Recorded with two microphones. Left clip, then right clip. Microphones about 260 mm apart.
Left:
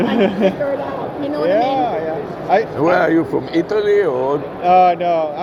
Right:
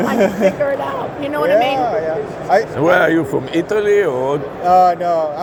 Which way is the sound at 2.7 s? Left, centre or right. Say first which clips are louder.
Right 1 dB; right.